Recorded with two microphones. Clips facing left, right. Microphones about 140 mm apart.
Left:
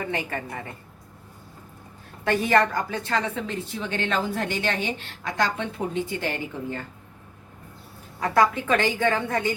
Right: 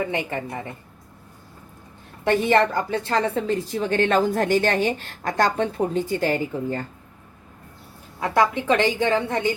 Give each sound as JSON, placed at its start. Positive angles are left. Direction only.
{"t": 0.1, "sound": "a woman's voice", "side_deg": -20}
{"t": 2.2, "sound": "a woman's voice", "side_deg": -25}
{"t": 8.4, "sound": "a woman's voice", "side_deg": -20}